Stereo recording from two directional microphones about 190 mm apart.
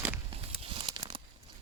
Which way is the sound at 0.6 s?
25° right (ahead or behind).